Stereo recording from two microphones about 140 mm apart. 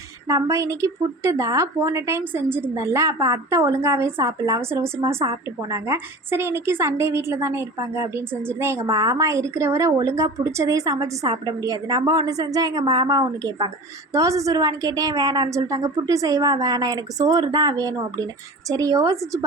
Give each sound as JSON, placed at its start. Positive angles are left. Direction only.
{"t": 0.3, "sound": "a woman's voice", "side_deg": -25}